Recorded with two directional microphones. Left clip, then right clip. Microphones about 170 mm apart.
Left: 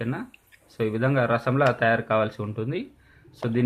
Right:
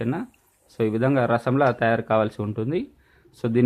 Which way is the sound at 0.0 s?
45° right (ahead or behind).